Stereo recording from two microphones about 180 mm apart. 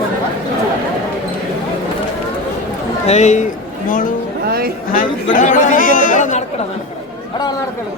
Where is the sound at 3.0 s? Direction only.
40° left (ahead or behind).